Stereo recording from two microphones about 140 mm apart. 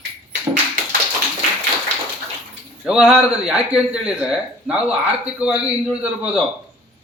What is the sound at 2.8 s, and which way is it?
A man's voice, 5° right (ahead or behind).